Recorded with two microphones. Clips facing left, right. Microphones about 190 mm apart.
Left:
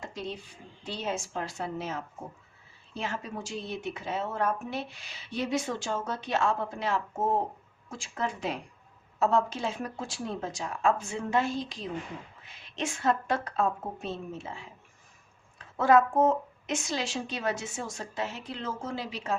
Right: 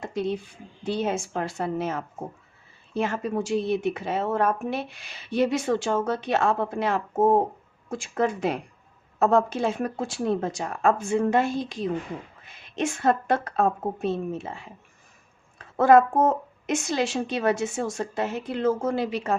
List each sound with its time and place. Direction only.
0.0 s a sound: 55° right (ahead or behind)
0.9 s speech: 55° right (ahead or behind)
15.8 s speech: 55° right (ahead or behind)